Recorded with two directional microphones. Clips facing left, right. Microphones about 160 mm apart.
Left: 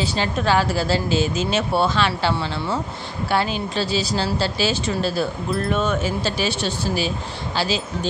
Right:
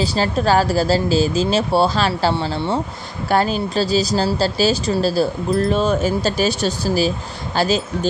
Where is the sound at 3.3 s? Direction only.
40° right (ahead or behind).